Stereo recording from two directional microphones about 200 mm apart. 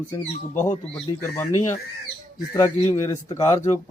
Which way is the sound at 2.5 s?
15° left (ahead or behind).